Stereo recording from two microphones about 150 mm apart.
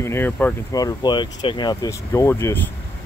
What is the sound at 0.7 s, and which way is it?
Speech, 25° left (ahead or behind).